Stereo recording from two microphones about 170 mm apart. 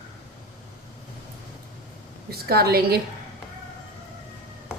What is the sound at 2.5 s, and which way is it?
Speech, 65° right (ahead or behind).